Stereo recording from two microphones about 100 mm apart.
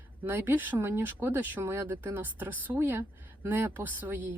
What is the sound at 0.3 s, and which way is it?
A woman's voice, 20° right (ahead or behind).